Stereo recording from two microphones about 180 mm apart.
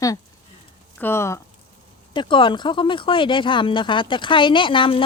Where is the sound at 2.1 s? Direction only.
25° left (ahead or behind).